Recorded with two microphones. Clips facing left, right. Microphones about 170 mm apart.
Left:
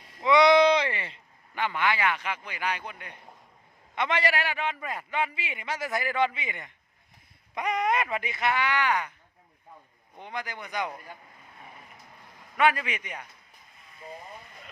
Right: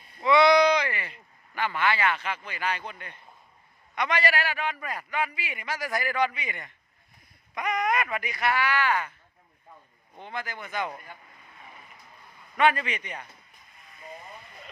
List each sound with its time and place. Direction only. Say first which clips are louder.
0.2 s a sound: even; 20° left (ahead or behind)
3.9 s a man's voice: even; 25° left (ahead or behind)
7.5 s a man's voice: even; 30° left (ahead or behind)
10.2 s speech: even; 15° left (ahead or behind)
12.5 s speech: right 1 dB; 10° left (ahead or behind)